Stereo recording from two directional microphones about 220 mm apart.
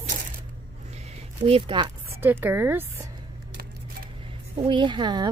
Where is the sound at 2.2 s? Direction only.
10° right (ahead or behind).